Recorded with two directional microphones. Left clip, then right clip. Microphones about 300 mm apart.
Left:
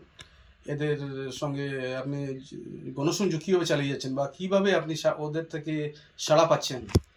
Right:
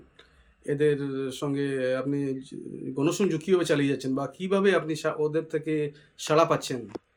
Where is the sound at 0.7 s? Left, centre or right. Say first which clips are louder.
Right 6 dB; right.